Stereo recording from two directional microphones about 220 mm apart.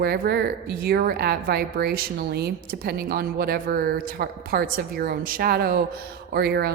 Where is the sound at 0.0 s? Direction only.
45° right (ahead or behind).